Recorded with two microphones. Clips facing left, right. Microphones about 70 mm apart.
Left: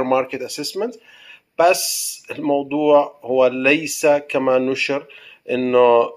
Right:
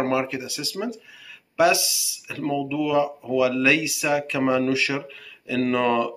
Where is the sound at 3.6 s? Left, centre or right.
Centre.